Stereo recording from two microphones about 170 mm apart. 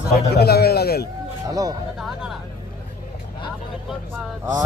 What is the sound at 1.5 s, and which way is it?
Speech, 20° right (ahead or behind).